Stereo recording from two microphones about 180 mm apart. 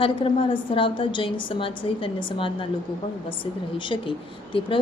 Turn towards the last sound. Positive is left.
turn(degrees=30)  # may be behind; listen again after turning